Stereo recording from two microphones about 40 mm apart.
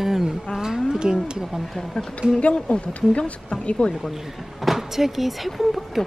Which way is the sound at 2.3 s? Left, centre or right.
Left.